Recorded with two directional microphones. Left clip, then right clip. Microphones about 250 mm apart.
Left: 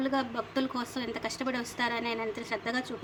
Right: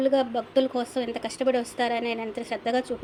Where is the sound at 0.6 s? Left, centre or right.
Left.